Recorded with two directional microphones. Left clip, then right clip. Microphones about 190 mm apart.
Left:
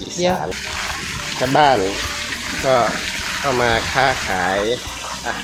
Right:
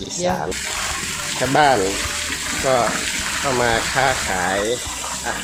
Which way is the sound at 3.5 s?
10° left (ahead or behind).